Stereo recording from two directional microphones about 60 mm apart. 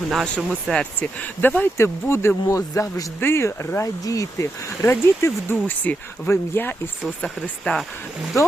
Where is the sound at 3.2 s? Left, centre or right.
Left.